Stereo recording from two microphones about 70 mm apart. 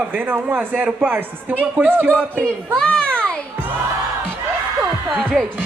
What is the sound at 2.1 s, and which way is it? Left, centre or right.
Speech, centre.